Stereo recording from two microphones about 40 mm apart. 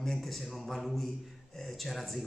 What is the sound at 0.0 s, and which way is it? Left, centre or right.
A man's voice, centre.